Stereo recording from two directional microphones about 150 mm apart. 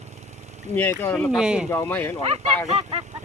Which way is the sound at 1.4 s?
5° right (ahead or behind).